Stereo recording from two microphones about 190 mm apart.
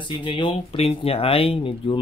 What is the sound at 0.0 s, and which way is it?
Speech, 25° left (ahead or behind).